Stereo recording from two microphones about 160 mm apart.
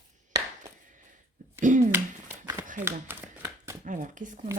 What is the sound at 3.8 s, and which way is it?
Speech, 55° right (ahead or behind).